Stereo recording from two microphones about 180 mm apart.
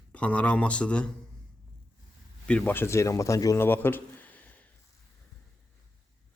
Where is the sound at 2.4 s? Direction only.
5° left (ahead or behind).